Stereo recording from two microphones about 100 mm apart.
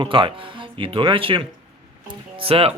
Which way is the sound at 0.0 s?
60° right (ahead or behind).